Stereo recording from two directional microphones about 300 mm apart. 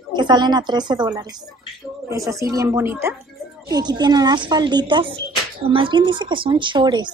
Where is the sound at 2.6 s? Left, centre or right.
Centre.